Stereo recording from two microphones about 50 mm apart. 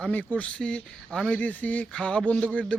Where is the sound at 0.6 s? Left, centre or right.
Centre.